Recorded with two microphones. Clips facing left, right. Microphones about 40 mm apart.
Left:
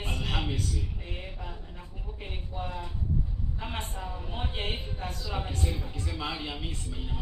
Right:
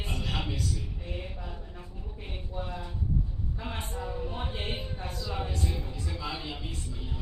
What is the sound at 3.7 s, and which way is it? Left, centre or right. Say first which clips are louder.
Speech: right 3 dB; left.